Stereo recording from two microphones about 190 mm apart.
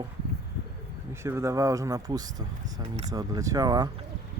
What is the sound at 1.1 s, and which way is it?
Speech, 15° right (ahead or behind).